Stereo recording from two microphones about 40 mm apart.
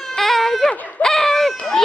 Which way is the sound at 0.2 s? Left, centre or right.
Centre.